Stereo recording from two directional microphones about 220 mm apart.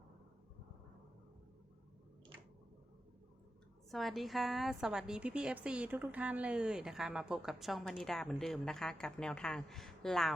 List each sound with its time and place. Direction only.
3.9 s a woman's voice: centre (ahead or behind)